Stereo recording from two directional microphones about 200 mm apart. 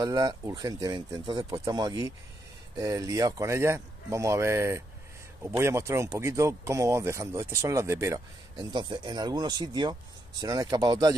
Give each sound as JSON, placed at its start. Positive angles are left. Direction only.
{"t": 0.0, "sound": "speech", "side_deg": -20}